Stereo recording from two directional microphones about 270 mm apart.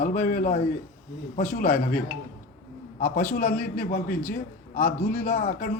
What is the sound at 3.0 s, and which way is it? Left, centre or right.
A man's voice, left.